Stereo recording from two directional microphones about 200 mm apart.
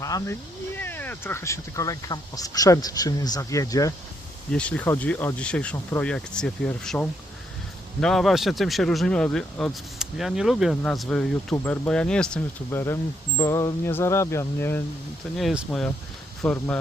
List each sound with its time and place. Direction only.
0.0 s speech: 15° left (ahead or behind)
4.5 s speech: 5° left (ahead or behind)
15.4 s speech: centre (ahead or behind)